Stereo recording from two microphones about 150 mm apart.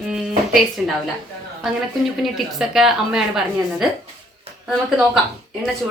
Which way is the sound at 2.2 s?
5° right (ahead or behind).